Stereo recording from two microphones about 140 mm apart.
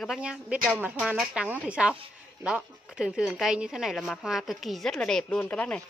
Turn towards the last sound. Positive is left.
turn(degrees=10)  # may be behind; listen again after turning